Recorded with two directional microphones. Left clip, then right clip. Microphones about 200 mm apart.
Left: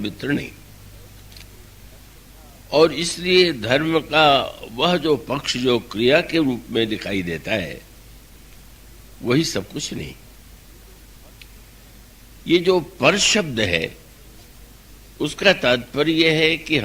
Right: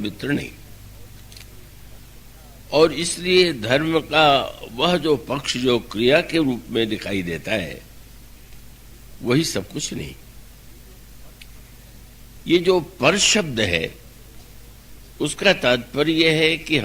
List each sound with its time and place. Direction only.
0.0 s a man's voice: 50° left (ahead or behind)
2.6 s a man's voice: 50° left (ahead or behind)
9.2 s a man's voice: 45° left (ahead or behind)
12.5 s a man's voice: 45° left (ahead or behind)
15.2 s a man's voice: 50° left (ahead or behind)